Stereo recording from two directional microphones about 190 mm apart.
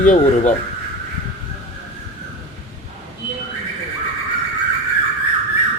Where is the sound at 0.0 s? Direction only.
40° left (ahead or behind).